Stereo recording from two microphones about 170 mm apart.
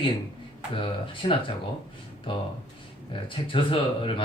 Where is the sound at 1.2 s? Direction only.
30° left (ahead or behind).